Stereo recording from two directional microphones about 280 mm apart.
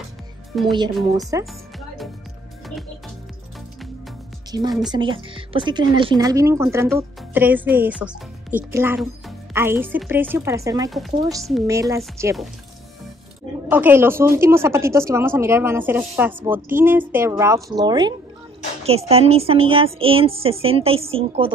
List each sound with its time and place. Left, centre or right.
0.7 s speech: centre
4.5 s speech: centre
10.9 s speech: centre
11.6 s speech: centre
13.7 s a woman's voice: centre